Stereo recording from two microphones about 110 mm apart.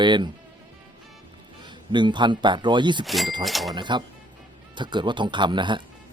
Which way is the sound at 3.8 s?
45° right (ahead or behind).